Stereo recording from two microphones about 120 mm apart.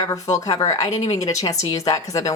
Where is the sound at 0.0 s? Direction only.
25° left (ahead or behind).